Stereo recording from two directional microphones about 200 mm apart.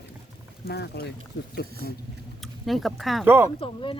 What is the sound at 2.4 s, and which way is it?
Speech, centre (ahead or behind).